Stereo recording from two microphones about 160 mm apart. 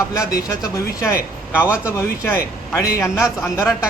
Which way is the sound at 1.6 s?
5° right (ahead or behind).